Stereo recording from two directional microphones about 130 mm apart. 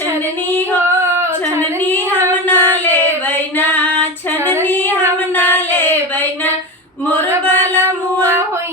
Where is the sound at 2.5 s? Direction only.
15° left (ahead or behind).